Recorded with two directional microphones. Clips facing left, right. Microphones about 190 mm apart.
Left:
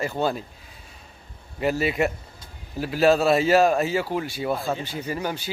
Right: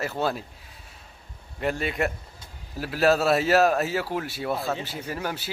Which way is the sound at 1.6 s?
5° left (ahead or behind).